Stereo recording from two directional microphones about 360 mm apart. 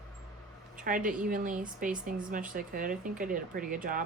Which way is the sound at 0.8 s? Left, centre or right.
Right.